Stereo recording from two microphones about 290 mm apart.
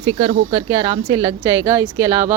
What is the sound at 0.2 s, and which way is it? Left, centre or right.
Speech, centre.